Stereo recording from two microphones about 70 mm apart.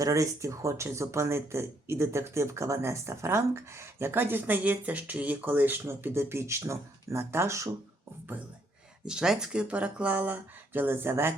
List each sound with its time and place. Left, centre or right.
0.0 s speech: right
9.0 s speech: centre; by 11.3 s right